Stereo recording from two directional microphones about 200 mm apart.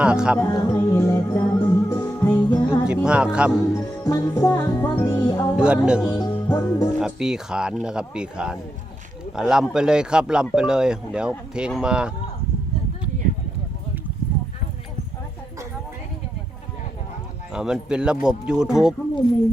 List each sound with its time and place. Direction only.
0.0 s speech: 5° right (ahead or behind)
0.3 s music: 15° left (ahead or behind)
2.8 s music: 5° right (ahead or behind)
3.3 s speech: 5° right (ahead or behind)
3.7 s music: 15° left (ahead or behind)
5.5 s speech: 5° right (ahead or behind)
6.1 s music: 20° left (ahead or behind)
7.0 s speech: 5° right (ahead or behind)
17.5 s speech: 5° right (ahead or behind)